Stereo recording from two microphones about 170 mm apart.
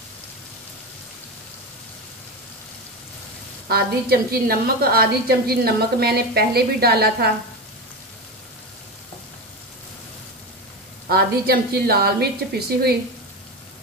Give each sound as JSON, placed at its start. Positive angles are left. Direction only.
{"t": 3.6, "sound": "a woman's voice", "side_deg": -65}
{"t": 11.1, "sound": "a woman's voice", "side_deg": -65}